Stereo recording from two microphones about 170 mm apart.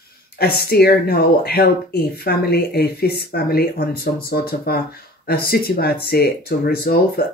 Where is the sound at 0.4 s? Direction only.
65° left (ahead or behind).